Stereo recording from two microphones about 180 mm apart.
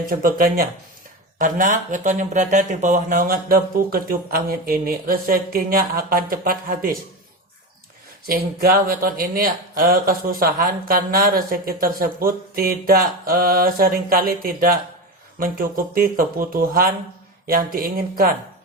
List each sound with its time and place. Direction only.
0.1 s speech: 55° right (ahead or behind)
8.3 s speech: 55° right (ahead or behind)